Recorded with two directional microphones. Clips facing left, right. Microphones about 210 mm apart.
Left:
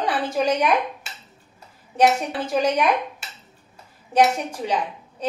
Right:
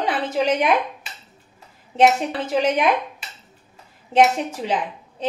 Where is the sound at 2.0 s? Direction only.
25° right (ahead or behind).